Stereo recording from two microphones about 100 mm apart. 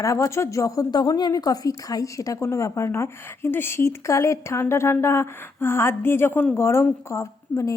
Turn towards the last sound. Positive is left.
turn(degrees=30)  # may be behind; listen again after turning